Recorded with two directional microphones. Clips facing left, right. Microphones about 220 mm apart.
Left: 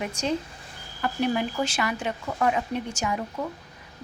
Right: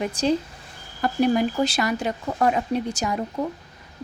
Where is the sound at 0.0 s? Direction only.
35° right (ahead or behind).